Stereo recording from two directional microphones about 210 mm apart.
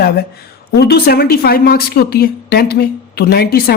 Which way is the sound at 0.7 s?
50° left (ahead or behind).